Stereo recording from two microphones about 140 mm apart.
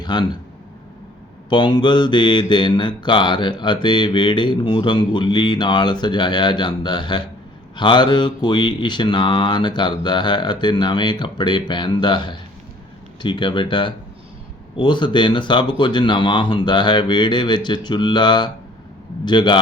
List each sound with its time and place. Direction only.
0.0 s speech: 30° left (ahead or behind)
1.5 s speech: 35° left (ahead or behind)